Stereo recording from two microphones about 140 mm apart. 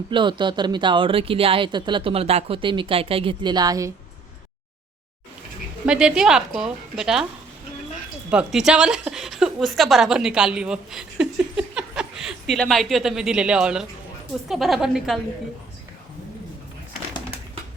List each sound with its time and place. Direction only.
0.1 s speech: 35° right (ahead or behind)
5.8 s a woman's voice: 5° right (ahead or behind)
8.3 s a woman's voice: 5° right (ahead or behind)